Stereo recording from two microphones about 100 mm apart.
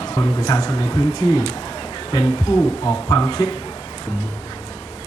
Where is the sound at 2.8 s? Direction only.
35° left (ahead or behind).